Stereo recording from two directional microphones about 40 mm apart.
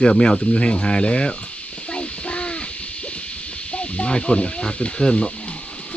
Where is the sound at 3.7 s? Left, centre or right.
Left.